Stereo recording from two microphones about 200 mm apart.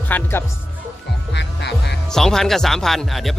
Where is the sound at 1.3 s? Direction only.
60° left (ahead or behind).